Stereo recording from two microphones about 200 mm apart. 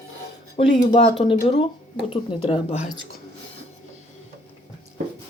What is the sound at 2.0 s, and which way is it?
Speech, 25° left (ahead or behind).